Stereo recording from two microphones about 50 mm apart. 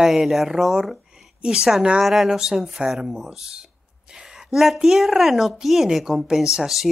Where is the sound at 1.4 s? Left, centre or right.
Centre.